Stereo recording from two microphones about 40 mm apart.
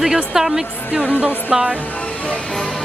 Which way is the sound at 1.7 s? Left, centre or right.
Left.